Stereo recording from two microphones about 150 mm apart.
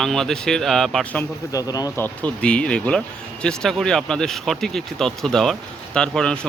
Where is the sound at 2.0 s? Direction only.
10° left (ahead or behind).